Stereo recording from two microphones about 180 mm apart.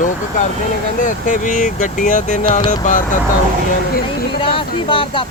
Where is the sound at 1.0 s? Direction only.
45° left (ahead or behind).